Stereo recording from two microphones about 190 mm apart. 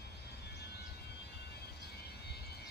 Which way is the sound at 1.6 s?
60° left (ahead or behind).